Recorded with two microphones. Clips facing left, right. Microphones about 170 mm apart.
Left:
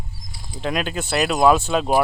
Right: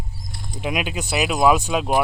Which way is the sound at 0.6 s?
10° right (ahead or behind).